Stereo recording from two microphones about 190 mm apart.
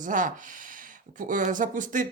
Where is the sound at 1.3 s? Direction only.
45° right (ahead or behind).